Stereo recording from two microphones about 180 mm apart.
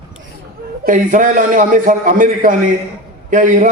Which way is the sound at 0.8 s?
45° right (ahead or behind).